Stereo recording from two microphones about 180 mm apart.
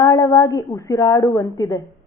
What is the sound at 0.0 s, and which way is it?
A woman's voice, 20° left (ahead or behind).